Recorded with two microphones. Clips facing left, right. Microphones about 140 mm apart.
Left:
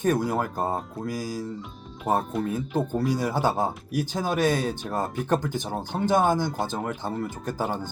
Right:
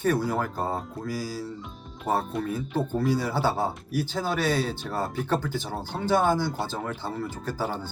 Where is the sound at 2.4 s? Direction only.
15° left (ahead or behind).